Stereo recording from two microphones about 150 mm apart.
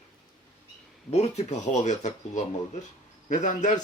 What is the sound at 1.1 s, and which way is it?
Speech, 45° left (ahead or behind).